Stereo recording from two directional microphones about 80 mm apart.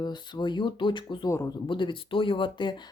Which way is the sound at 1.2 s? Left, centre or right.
Left.